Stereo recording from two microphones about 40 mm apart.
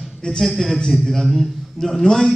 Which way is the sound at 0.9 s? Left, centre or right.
Centre.